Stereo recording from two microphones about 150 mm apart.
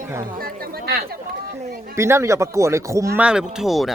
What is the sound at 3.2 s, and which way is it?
Speech, 5° right (ahead or behind).